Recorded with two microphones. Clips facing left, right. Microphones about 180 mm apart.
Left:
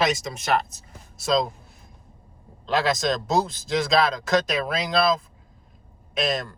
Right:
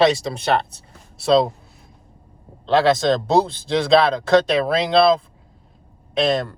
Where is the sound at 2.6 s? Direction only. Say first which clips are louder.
Right 7 dB; 30° right (ahead or behind).